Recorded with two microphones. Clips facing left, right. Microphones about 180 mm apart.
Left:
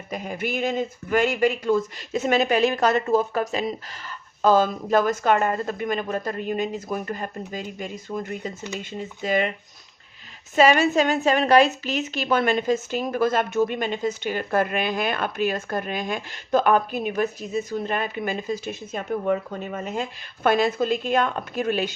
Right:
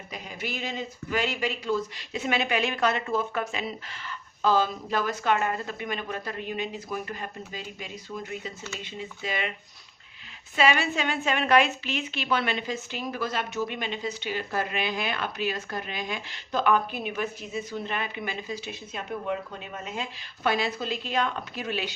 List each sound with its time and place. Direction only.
0.1 s a woman's voice: 50° left (ahead or behind)
10.5 s a woman's voice: 45° left (ahead or behind)